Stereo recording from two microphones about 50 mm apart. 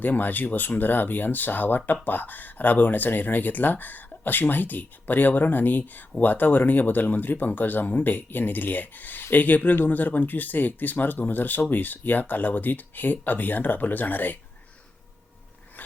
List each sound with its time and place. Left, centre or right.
0.0 s speech: left